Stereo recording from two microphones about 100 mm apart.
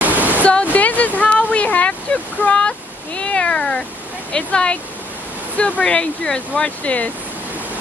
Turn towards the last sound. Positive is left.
turn(degrees=15)  # may be behind; listen again after turning